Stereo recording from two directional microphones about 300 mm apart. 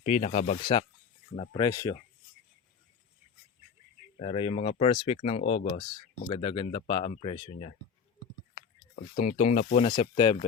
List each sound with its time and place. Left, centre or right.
0.0 s speech: left
4.2 s speech: centre
9.1 s speech: left